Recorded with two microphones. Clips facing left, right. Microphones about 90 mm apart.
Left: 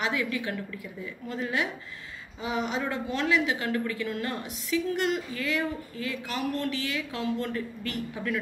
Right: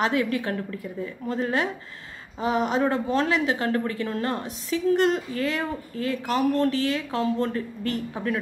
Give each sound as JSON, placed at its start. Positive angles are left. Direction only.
{"t": 0.0, "sound": "speech", "side_deg": -40}